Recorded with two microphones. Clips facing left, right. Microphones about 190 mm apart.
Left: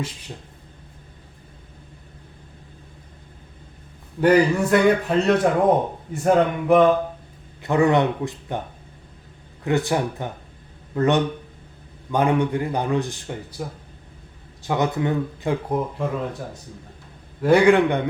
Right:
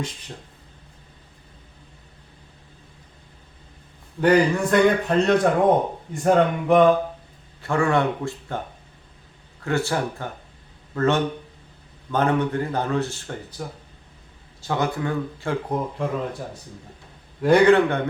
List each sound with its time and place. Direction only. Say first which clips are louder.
4.2 s a man's voice: left 1 dB; 5° left (ahead or behind)
7.6 s speech: left 3 dB; 20° left (ahead or behind)
9.6 s speech: left 2 dB; 20° left (ahead or behind)
14.7 s speech: left 2 dB; 20° left (ahead or behind)
15.7 s a man's voice: left 1 dB; 5° left (ahead or behind)
17.4 s a man's voice: even; 5° left (ahead or behind)